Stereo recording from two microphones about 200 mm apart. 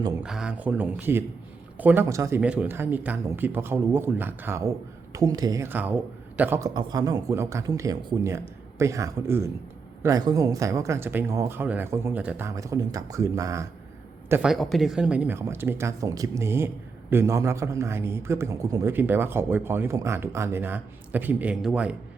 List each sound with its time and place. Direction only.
0.2 s speech: 5° right (ahead or behind)